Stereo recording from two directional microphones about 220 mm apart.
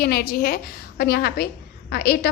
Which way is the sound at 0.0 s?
45° left (ahead or behind).